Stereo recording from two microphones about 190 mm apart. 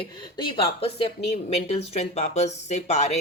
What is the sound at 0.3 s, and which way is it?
Speech, 30° left (ahead or behind).